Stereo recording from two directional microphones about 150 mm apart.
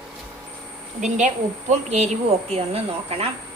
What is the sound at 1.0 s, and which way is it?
A woman's voice, 55° right (ahead or behind).